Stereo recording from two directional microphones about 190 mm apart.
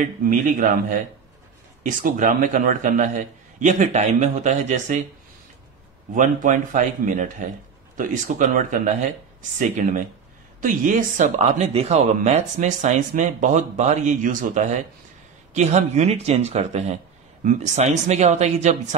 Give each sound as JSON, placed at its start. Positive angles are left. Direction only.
{"t": 0.0, "sound": "speech", "side_deg": -45}
{"t": 6.1, "sound": "speech", "side_deg": -45}